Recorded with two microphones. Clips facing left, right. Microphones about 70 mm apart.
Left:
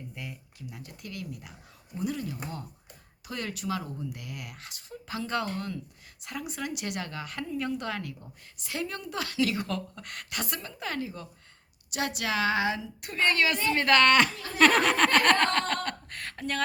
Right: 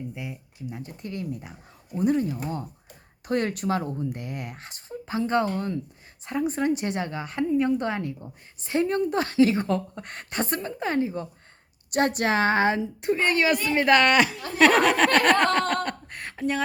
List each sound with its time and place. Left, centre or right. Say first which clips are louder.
0.1 s speech: right 5 dB; centre
0.7 s speech: right 7 dB; right
3.2 s a woman's voice: right 9 dB; right
11.9 s speech: right 8 dB; right
13.0 s a woman's voice: right 2 dB; right
14.6 s a sound: right 4 dB; centre
15.7 s laughter: right 5 dB; centre
16.3 s speech: right 5 dB; centre